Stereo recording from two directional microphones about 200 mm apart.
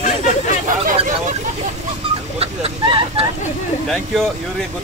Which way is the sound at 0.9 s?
35° right (ahead or behind).